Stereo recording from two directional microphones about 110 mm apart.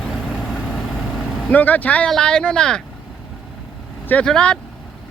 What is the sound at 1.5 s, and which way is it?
Speech, 15° left (ahead or behind).